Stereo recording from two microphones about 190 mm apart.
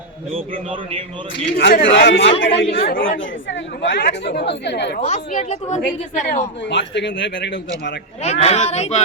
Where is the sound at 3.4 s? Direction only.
70° left (ahead or behind).